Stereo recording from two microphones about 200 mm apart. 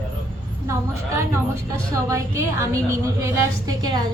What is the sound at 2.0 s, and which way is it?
A woman's voice, 15° right (ahead or behind).